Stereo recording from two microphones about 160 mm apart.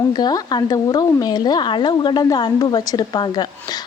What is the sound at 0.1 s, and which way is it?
Speech, 25° left (ahead or behind).